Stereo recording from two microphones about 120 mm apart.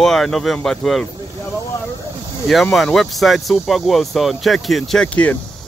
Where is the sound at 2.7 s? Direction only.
5° left (ahead or behind).